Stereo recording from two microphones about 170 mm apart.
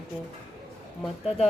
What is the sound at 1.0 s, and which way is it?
Speech, centre (ahead or behind).